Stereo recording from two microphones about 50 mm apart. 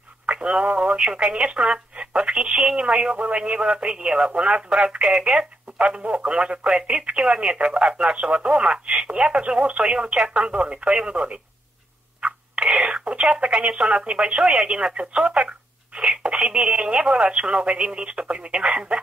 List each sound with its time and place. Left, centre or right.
0.3 s speech: right